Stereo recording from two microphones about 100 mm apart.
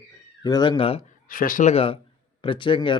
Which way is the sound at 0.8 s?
75° left (ahead or behind).